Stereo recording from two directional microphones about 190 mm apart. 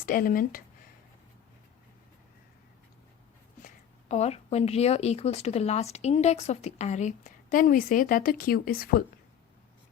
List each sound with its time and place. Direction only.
0.0 s speech: 50° left (ahead or behind)
4.1 s speech: 35° left (ahead or behind); by 9.0 s 50° left (ahead or behind)